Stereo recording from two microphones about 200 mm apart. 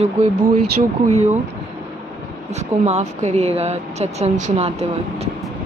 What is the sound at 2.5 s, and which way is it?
Speech, 35° right (ahead or behind).